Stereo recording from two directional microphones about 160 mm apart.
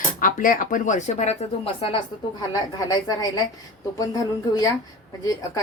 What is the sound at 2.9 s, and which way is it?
Speech, 25° left (ahead or behind).